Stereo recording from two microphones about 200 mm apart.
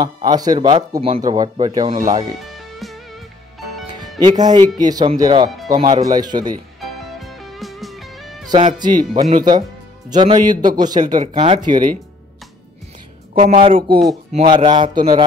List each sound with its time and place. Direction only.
0.0 s speech: 20° right (ahead or behind)
2.5 s music: centre (ahead or behind)
4.0 s speech: 20° right (ahead or behind)
7.2 s music: centre (ahead or behind)
8.5 s speech: 25° right (ahead or behind)
13.3 s speech: 30° right (ahead or behind)